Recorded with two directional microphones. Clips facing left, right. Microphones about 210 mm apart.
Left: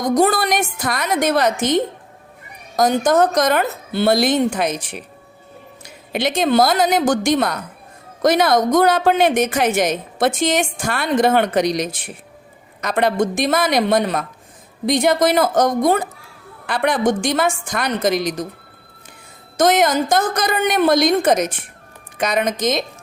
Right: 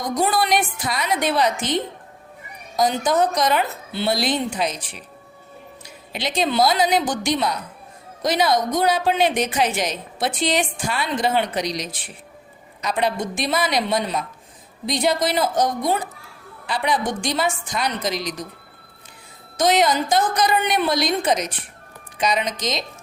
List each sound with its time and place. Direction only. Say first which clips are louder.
0.0 s a woman's voice: left 5 dB; 45° left (ahead or behind)
19.5 s a woman's voice: left 3 dB; 50° left (ahead or behind)